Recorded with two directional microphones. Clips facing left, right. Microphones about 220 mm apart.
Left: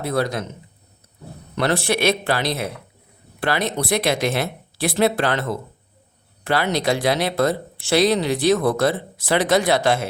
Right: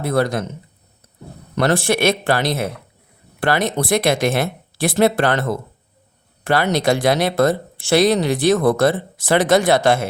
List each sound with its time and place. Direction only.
0.0 s speech: 50° right (ahead or behind)
1.5 s speech: 45° right (ahead or behind)